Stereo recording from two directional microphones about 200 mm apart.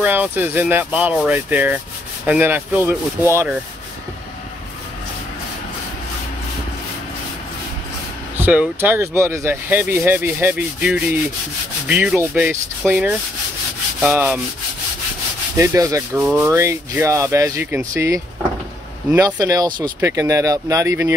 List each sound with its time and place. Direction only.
0.0 s sanding: 10° right (ahead or behind)
8.4 s sanding: 10° right (ahead or behind)
15.5 s sanding: 15° right (ahead or behind)